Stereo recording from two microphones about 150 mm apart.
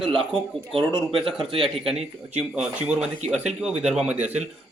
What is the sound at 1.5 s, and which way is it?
Speech, 40° right (ahead or behind).